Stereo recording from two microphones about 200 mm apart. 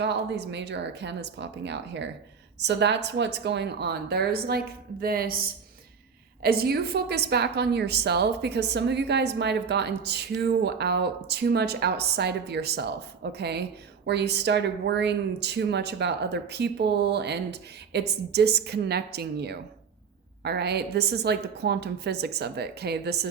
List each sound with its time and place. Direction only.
0.0 s a woman's voice: 60° right (ahead or behind)